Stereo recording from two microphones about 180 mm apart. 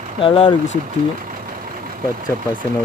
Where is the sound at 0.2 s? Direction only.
30° left (ahead or behind).